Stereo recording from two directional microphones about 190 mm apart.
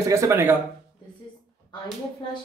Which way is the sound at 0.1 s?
15° right (ahead or behind).